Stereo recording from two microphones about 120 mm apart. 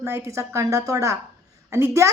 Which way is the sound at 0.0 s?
25° right (ahead or behind).